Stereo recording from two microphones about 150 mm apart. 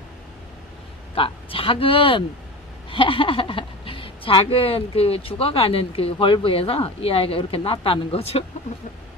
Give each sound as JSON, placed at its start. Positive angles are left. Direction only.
{"t": 1.1, "sound": "speech", "side_deg": 35}